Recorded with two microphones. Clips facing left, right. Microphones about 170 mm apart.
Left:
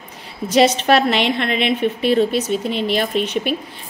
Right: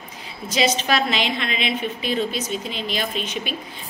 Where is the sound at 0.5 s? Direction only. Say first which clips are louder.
Left 7 dB; 65° left (ahead or behind).